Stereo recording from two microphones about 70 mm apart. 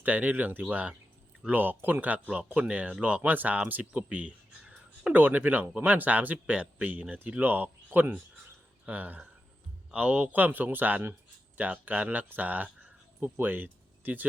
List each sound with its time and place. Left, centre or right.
0.0 s speech: right